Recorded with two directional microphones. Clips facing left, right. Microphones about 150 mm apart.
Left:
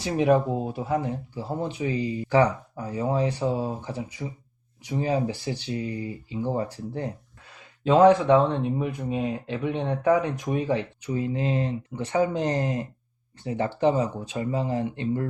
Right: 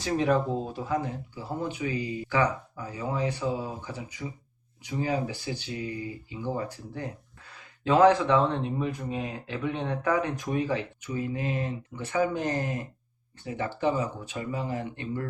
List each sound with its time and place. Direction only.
0.0 s speech: 15° left (ahead or behind)
0.9 s speech: 30° left (ahead or behind)
7.9 s speech: 20° left (ahead or behind)